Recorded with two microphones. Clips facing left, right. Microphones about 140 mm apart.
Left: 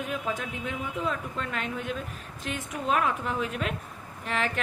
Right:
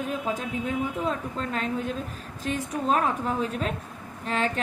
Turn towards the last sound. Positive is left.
turn(degrees=-35)  # may be behind; listen again after turning